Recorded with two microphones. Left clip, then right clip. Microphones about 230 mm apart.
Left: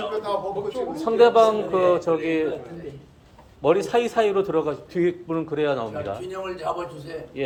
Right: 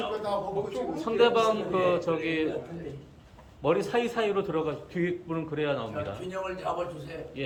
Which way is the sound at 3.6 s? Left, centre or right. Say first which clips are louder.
Left 6 dB; centre.